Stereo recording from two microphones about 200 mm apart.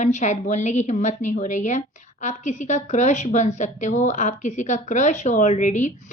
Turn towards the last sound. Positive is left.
turn(degrees=40)  # may be behind; listen again after turning